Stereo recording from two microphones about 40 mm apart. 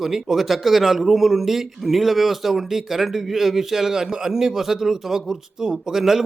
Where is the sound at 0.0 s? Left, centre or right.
Centre.